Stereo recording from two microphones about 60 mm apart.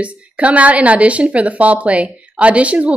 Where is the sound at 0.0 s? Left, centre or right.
Right.